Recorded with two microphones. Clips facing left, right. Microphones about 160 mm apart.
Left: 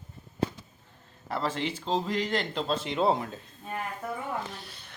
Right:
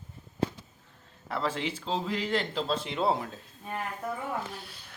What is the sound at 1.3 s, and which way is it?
Speech, centre (ahead or behind).